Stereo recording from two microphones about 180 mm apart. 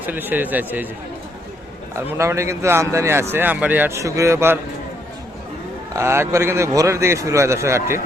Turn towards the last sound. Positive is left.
turn(degrees=-15)  # may be behind; listen again after turning